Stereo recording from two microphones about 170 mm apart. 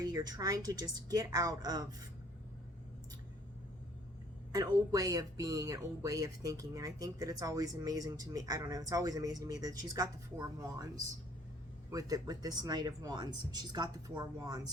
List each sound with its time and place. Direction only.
0.0 s speech: 20° right (ahead or behind)
4.5 s speech: 25° right (ahead or behind)
11.9 s speech: 20° right (ahead or behind)